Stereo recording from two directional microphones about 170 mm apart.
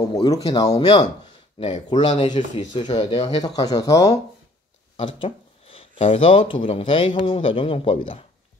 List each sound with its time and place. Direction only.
0.1 s speech: 20° left (ahead or behind); by 3.4 s 40° left (ahead or behind)
3.4 s speech: 25° left (ahead or behind)
5.0 s speech: 30° left (ahead or behind)